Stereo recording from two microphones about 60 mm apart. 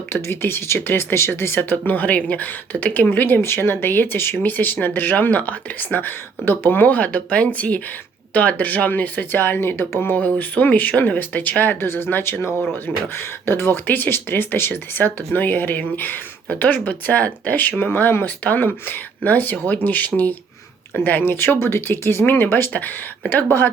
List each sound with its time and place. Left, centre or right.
0.1 s speech: left
1.7 s speech: left
10.2 s speech: left